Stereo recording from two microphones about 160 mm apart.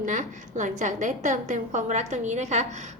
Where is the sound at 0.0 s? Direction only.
50° right (ahead or behind).